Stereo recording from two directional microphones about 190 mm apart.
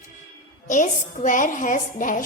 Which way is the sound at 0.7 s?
40° left (ahead or behind).